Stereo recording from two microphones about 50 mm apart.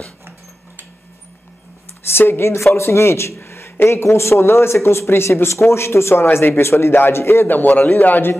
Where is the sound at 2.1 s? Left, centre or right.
Left.